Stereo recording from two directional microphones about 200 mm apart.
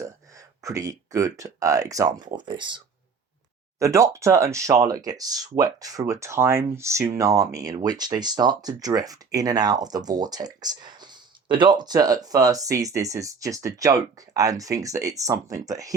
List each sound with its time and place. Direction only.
0.0 s speech: 15° right (ahead or behind)